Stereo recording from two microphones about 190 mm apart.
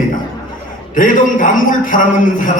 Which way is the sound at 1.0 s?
45° left (ahead or behind).